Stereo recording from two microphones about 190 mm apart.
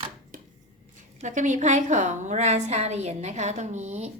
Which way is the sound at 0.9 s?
40° right (ahead or behind).